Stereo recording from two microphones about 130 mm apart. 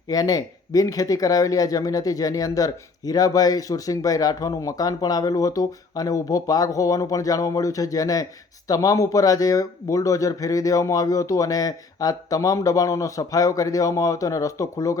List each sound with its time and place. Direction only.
0.1 s speech: 30° left (ahead or behind)